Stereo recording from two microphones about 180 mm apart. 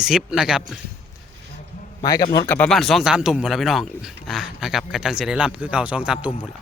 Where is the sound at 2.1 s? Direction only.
20° left (ahead or behind).